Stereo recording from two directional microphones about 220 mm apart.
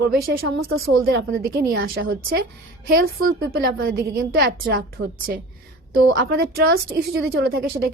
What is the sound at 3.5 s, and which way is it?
A woman's voice, 45° right (ahead or behind).